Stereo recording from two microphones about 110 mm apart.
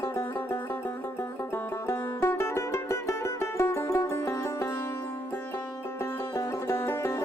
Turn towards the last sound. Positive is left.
turn(degrees=25)  # may be behind; listen again after turning